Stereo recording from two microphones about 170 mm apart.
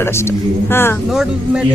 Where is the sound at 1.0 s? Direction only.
5° right (ahead or behind).